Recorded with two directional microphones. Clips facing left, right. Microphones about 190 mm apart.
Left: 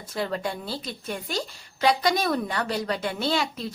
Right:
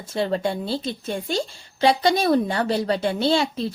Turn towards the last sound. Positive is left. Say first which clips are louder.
# right 6 dB
turn(degrees=-30)  # may be behind; listen again after turning